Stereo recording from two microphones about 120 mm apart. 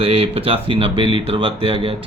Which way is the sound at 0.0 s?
50° right (ahead or behind).